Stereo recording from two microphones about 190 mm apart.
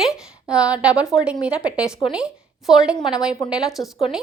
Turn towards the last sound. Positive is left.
turn(degrees=0)  # may be behind; listen again after turning